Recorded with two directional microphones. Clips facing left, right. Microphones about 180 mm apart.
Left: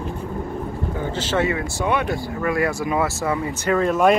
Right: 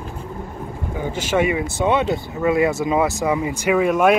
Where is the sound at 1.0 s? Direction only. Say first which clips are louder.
Right 3 dB; 10° right (ahead or behind).